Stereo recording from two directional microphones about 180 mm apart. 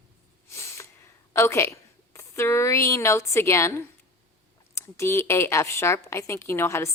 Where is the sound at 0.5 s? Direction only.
15° left (ahead or behind).